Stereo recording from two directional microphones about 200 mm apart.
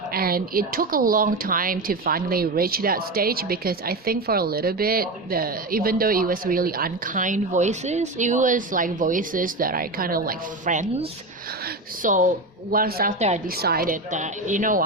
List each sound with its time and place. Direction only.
0.1 s speech: 50° right (ahead or behind)
12.0 s speech: 40° right (ahead or behind)
13.6 s speech: 50° right (ahead or behind)